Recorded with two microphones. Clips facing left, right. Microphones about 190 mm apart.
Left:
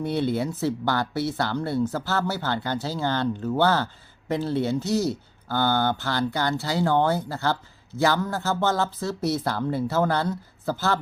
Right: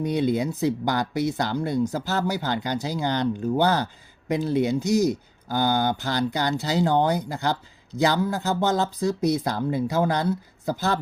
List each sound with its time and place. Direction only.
0.0 s speech: 15° right (ahead or behind)